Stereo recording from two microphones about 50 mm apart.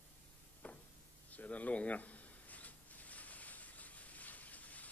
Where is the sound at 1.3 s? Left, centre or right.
Left.